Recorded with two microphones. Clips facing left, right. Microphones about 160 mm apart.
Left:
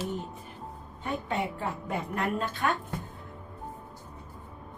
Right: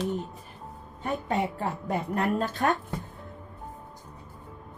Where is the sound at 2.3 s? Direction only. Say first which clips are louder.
Right 3 dB; 40° right (ahead or behind).